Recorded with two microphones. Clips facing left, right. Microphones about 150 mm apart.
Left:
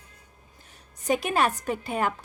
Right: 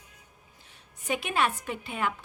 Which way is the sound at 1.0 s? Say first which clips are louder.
Left 4 dB; 40° left (ahead or behind).